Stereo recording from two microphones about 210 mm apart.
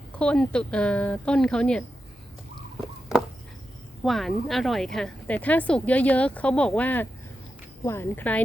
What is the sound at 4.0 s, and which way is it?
Speech, centre (ahead or behind).